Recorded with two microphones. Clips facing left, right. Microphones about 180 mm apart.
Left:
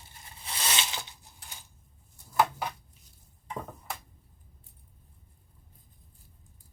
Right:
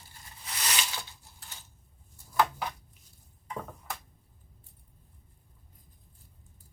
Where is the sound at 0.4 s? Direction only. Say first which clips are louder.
Left 2 dB; 25° left (ahead or behind).